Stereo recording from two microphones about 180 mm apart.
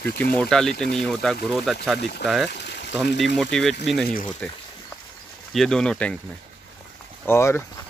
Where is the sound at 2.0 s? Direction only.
60° left (ahead or behind).